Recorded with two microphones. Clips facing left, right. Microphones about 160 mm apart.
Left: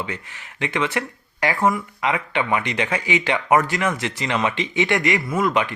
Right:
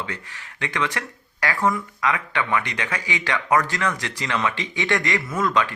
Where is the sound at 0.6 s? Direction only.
20° left (ahead or behind).